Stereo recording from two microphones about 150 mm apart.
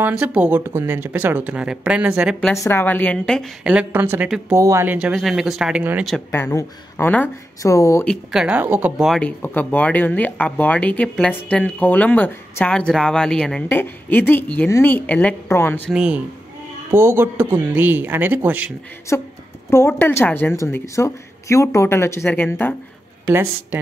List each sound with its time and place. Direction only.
0.0 s speech: 10° right (ahead or behind)
2.6 s speech: 15° left (ahead or behind)
3.6 s speech: 10° right (ahead or behind)
4.9 s speech: 5° right (ahead or behind)
6.3 s speech: 15° left (ahead or behind)
8.0 s speech: centre (ahead or behind)
9.2 s speech: 10° left (ahead or behind)
15.9 s speech: 5° right (ahead or behind)
19.1 s speech: 20° left (ahead or behind)